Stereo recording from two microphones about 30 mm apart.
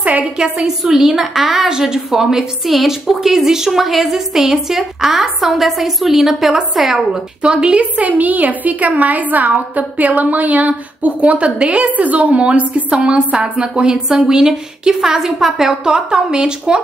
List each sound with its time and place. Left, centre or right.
0.0 s a sound: right
0.8 s a woman's voice: centre
1.7 s a woman's voice: right
2.0 s a woman's voice: centre
7.4 s a woman's voice: right
7.9 s a woman's voice: right
11.9 s a woman's voice: right
12.9 s a woman's voice: right; by 15.8 s centre
15.8 s a woman's voice: right